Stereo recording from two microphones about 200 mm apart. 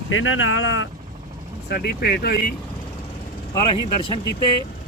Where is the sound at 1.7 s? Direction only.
55° left (ahead or behind).